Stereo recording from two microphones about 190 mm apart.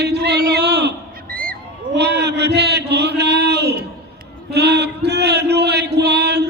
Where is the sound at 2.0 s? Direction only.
60° right (ahead or behind).